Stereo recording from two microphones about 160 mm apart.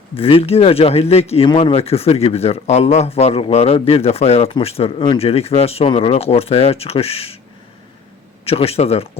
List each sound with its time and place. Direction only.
0.2 s speech: 35° left (ahead or behind)
8.4 s speech: 40° left (ahead or behind)